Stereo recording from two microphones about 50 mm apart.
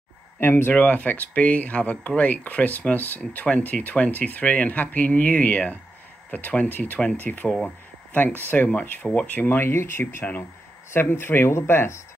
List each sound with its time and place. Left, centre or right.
0.4 s speech: left
0.7 s speech: left
7.6 s a sound: left
8.7 s speech: left